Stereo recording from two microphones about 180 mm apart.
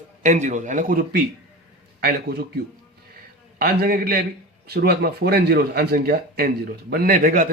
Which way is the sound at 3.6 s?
55° right (ahead or behind).